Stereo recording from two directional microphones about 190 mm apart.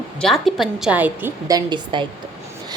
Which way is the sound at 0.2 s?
Centre (ahead or behind).